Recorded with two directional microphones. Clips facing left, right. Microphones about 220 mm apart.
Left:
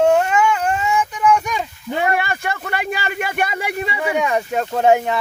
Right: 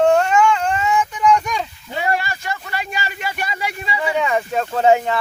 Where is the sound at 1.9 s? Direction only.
55° left (ahead or behind).